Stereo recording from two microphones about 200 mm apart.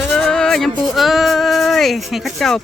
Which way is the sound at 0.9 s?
Centre (ahead or behind).